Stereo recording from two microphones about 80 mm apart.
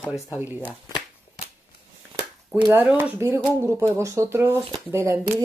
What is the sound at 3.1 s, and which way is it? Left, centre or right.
Speech, right.